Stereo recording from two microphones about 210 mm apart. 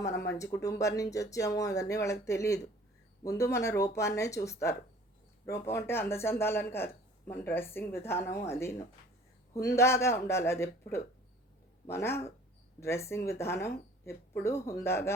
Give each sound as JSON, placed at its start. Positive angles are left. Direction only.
{"t": 0.0, "sound": "speech", "side_deg": 15}